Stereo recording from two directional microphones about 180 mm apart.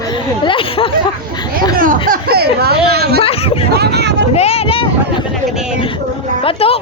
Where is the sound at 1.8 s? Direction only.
50° right (ahead or behind); by 4.2 s 70° right (ahead or behind).